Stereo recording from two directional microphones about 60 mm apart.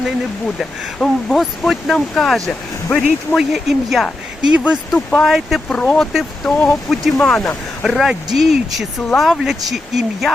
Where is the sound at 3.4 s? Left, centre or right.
Centre.